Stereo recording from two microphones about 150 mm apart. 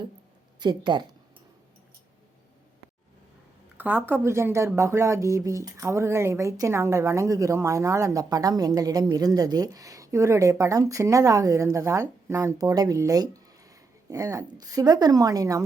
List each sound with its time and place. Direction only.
0.6 s speech: 30° right (ahead or behind)
3.8 s speech: 10° right (ahead or behind)